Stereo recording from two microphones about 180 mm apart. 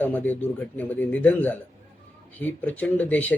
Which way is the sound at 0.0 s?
10° left (ahead or behind).